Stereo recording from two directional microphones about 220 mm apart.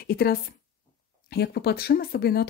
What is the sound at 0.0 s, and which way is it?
A woman's voice, 45° left (ahead or behind).